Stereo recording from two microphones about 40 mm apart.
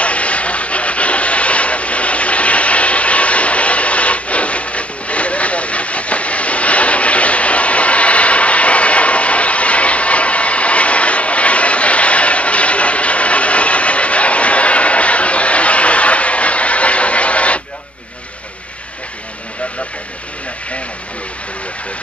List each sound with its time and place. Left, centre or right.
0.0 s wood: left